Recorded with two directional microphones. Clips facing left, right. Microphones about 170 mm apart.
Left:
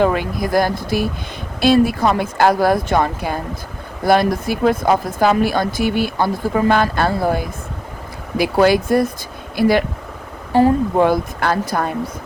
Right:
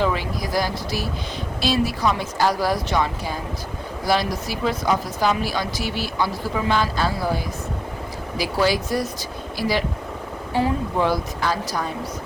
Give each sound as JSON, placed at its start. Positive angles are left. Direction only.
{"t": 0.0, "sound": "speech", "side_deg": 55}